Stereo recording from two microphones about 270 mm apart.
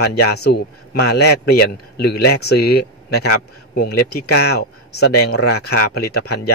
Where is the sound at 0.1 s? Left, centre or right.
Left.